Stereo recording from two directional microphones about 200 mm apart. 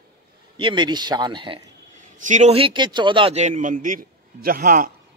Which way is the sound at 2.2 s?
35° right (ahead or behind).